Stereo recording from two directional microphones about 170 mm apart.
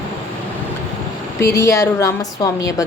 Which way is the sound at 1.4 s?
15° left (ahead or behind).